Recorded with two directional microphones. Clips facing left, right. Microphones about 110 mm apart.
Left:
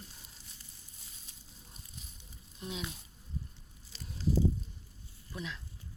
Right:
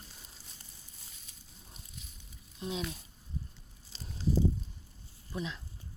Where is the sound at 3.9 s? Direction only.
25° right (ahead or behind).